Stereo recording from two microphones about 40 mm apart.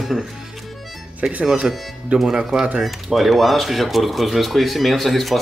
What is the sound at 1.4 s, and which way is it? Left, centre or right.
Speech, right.